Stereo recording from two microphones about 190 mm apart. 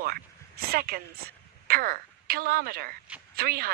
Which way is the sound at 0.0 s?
50° right (ahead or behind).